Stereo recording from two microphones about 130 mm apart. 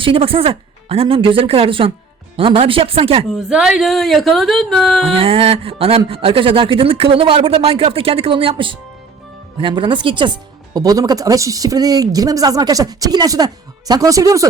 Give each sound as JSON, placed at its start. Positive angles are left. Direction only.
{"t": 0.0, "sound": "speech", "side_deg": -45}
{"t": 3.2, "sound": "speech", "side_deg": -5}
{"t": 5.1, "sound": "speech", "side_deg": -45}